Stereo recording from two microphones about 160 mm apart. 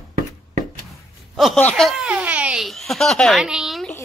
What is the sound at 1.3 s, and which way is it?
Speech, centre (ahead or behind).